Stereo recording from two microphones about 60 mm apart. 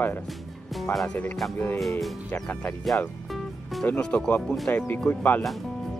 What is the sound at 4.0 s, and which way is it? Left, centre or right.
Speech, centre.